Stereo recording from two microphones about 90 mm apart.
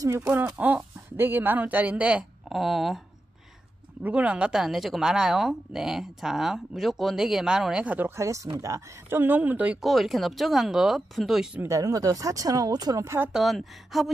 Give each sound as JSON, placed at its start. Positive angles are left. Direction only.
{"t": 0.0, "sound": "speech", "side_deg": -40}
{"t": 0.6, "sound": "speech", "side_deg": -15}
{"t": 4.0, "sound": "speech", "side_deg": -15}
{"t": 8.2, "sound": "speech", "side_deg": -35}
{"t": 9.1, "sound": "speech", "side_deg": -20}
{"t": 9.8, "sound": "speech", "side_deg": 0}
{"t": 11.6, "sound": "speech", "side_deg": -40}
{"t": 13.3, "sound": "speech", "side_deg": 0}